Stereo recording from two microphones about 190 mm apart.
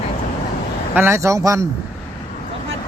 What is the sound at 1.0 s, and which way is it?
Speech, 15° right (ahead or behind).